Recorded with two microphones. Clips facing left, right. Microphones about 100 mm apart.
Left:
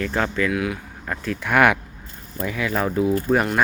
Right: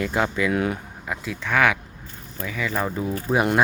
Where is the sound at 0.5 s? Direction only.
35° right (ahead or behind).